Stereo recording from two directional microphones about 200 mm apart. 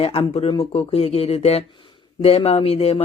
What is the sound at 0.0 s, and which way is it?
Speech, 30° left (ahead or behind).